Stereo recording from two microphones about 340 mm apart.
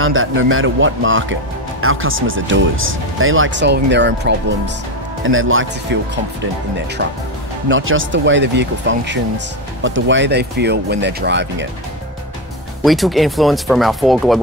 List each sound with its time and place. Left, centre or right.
0.0 s speech: right
7.6 s speech: right
12.8 s speech: centre